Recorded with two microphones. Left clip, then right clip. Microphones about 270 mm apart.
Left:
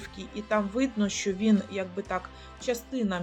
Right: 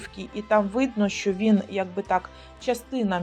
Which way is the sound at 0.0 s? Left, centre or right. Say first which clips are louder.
Right 4 dB; centre.